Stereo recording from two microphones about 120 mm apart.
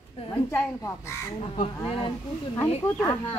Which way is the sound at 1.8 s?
50° left (ahead or behind).